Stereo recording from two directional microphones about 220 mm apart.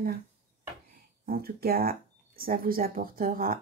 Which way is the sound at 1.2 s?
45° right (ahead or behind).